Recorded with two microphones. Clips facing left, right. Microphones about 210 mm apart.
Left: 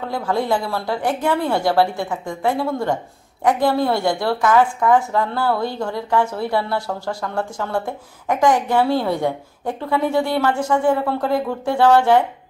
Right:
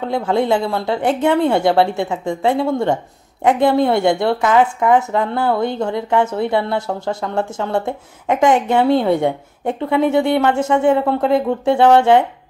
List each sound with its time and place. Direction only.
0.0 s a woman's voice: 20° right (ahead or behind)